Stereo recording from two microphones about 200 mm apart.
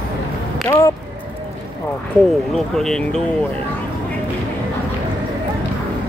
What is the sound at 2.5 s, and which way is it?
Speech, centre (ahead or behind).